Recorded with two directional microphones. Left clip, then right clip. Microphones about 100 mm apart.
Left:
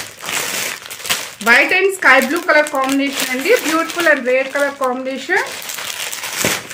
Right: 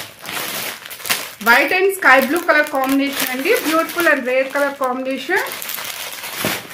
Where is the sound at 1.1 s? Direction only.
Centre (ahead or behind).